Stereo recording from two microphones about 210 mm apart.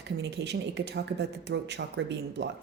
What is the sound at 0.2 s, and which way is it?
A woman's voice, 55° right (ahead or behind).